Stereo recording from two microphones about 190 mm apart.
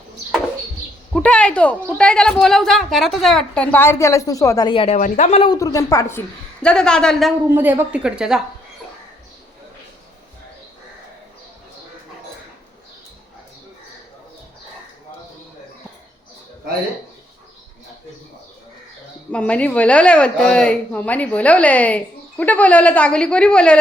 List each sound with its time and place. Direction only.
1.1 s speech: 5° left (ahead or behind); by 4.9 s 30° left (ahead or behind)
4.9 s speech: 40° left (ahead or behind)
5.5 s speech: 15° left (ahead or behind)
7.4 s speech: 10° right (ahead or behind)
19.3 s a woman's voice: 5° left (ahead or behind)